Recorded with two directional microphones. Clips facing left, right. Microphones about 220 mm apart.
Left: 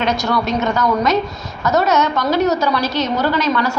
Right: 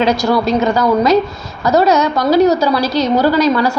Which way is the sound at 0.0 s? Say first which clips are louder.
Right 5 dB; 30° right (ahead or behind).